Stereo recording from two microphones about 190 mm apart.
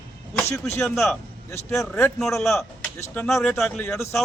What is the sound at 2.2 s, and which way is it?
Speech, centre (ahead or behind).